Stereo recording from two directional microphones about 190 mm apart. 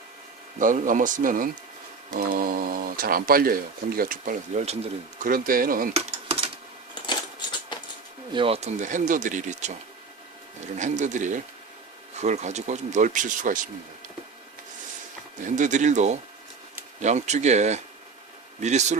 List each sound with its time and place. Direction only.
0.6 s speech: 45° right (ahead or behind)
5.3 s speech: 45° right (ahead or behind)
5.9 s a sound: 35° right (ahead or behind)
8.3 s speech: 30° right (ahead or behind)
10.8 s speech: 40° right (ahead or behind)
15.4 s speech: 40° right (ahead or behind)